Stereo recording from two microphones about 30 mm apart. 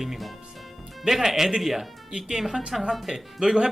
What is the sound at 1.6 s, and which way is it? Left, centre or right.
A man's voice, centre.